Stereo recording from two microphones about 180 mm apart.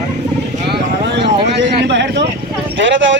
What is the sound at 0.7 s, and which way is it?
Vehicle, 75° right (ahead or behind).